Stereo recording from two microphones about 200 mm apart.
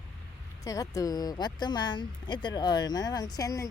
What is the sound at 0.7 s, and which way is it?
Speech, 15° left (ahead or behind).